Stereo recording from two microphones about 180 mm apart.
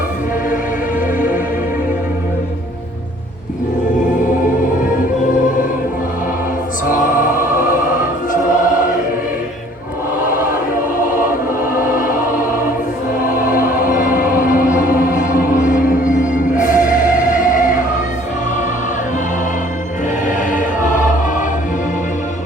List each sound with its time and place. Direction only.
6.8 s music: 50° left (ahead or behind)
7.4 s music: 10° right (ahead or behind)
11.6 s music: 10° right (ahead or behind)
11.9 s music: 50° left (ahead or behind)
13.7 s music: 50° left (ahead or behind)
14.1 s music: 10° right (ahead or behind)
14.3 s music: 50° left (ahead or behind)
20.2 s music: 45° left (ahead or behind)